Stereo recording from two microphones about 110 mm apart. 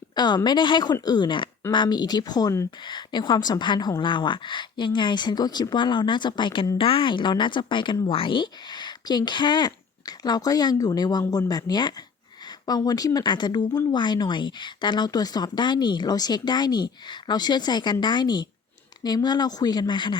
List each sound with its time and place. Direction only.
0.2 s speech: 40° left (ahead or behind)
2.8 s speech: 45° left (ahead or behind)